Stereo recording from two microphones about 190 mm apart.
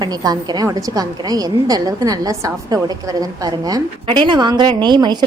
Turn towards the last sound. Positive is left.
turn(degrees=-25)  # may be behind; listen again after turning